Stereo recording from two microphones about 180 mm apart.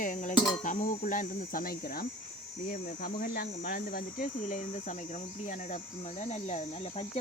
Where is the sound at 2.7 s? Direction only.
55° left (ahead or behind).